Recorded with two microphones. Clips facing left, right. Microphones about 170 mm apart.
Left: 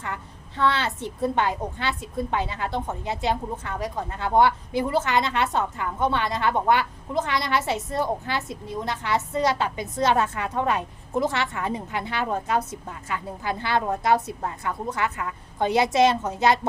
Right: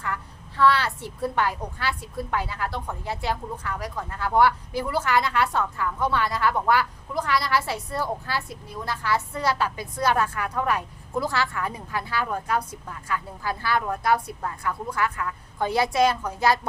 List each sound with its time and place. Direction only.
0.0 s a woman's voice: 20° left (ahead or behind)